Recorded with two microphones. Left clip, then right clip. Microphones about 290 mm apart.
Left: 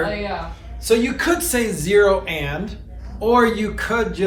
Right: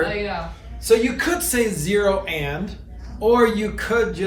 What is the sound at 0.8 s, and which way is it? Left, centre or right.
Speech, centre.